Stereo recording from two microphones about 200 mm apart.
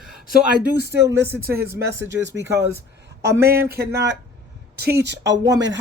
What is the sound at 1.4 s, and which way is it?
Speech, 50° right (ahead or behind).